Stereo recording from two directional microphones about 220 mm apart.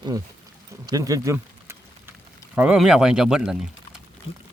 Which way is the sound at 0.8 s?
15° right (ahead or behind).